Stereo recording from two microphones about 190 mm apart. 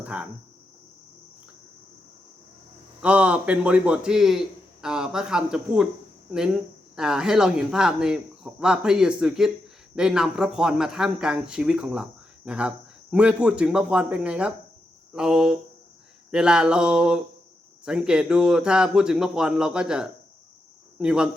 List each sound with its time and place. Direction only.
0.0 s cricket: 5° right (ahead or behind)
3.0 s a man's voice: 5° right (ahead or behind)